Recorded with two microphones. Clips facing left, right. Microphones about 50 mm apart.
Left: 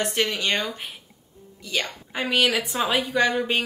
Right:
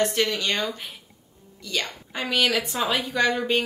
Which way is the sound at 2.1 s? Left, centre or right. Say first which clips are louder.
Left 1 dB; centre.